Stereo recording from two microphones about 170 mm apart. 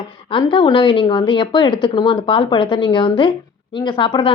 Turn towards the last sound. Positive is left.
turn(degrees=30)  # may be behind; listen again after turning